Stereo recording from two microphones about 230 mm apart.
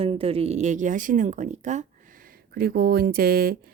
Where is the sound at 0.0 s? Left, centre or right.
Right.